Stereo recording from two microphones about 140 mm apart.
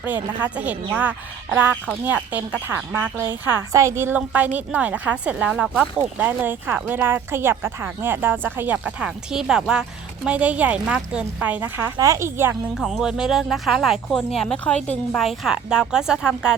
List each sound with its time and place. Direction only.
0.0 s speech: 10° right (ahead or behind)
12.7 s speech: centre (ahead or behind)